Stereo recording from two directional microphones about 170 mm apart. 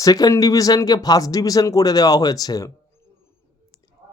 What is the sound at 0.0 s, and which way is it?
Speech, 20° left (ahead or behind).